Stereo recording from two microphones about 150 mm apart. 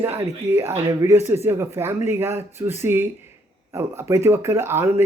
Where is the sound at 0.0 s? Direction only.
15° right (ahead or behind).